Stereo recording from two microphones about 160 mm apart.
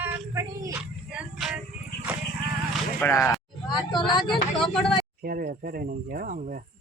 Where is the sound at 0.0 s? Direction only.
15° right (ahead or behind).